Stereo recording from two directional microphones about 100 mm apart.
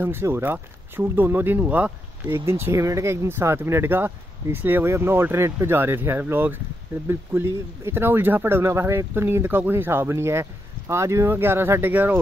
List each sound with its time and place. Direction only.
0.0 s speech: 20° right (ahead or behind)